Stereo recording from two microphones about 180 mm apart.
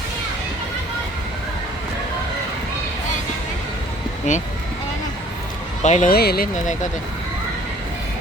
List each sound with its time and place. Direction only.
4.3 s speech: 45° left (ahead or behind)
5.8 s speech: 40° left (ahead or behind)
6.1 s speech: 60° left (ahead or behind)